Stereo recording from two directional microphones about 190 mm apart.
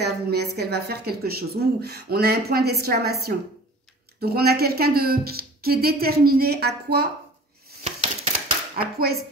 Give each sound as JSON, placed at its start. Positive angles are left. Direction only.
{"t": 0.0, "sound": "a woman's voice", "side_deg": -60}
{"t": 7.8, "sound": "a sound", "side_deg": -35}
{"t": 8.7, "sound": "speech", "side_deg": -55}